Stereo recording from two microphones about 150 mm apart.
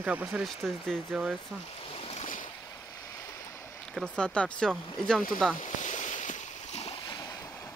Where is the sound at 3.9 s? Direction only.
5° left (ahead or behind).